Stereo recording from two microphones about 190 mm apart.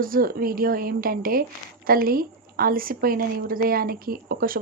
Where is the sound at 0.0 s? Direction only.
50° right (ahead or behind).